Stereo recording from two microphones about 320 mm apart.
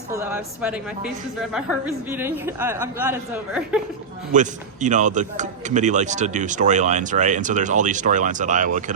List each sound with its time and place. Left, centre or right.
0.1 s a woman's voice: centre
4.4 s a man's voice: right